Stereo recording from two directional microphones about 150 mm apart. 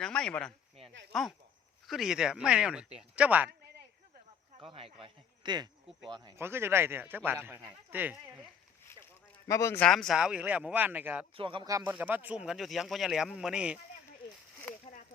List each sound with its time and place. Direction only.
0.0 s speech: 5° left (ahead or behind); by 3.5 s 10° right (ahead or behind)
4.6 s a man's voice: 40° right (ahead or behind)
6.3 s speech: 15° right (ahead or behind)
9.5 s speech: 20° left (ahead or behind)
9.8 s speech: 5° left (ahead or behind)
11.3 s a man's voice: 35° right (ahead or behind)
11.9 s speech: 10° right (ahead or behind)
14.7 s a sound: 10° left (ahead or behind)